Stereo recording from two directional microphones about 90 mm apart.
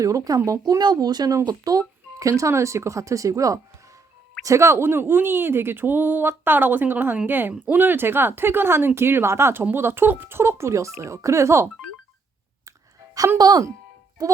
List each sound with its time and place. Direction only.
0.0 s speech: 35° right (ahead or behind)
0.7 s speech: 45° right (ahead or behind); by 11.7 s 30° right (ahead or behind)
13.1 s speech: 30° right (ahead or behind)
13.4 s speech: 45° right (ahead or behind)